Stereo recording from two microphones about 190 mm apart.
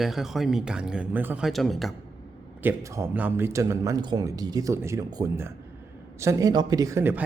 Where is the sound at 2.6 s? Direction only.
15° right (ahead or behind).